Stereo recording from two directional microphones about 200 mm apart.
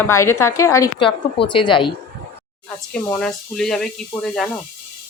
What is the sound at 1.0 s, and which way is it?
Speech, 25° left (ahead or behind).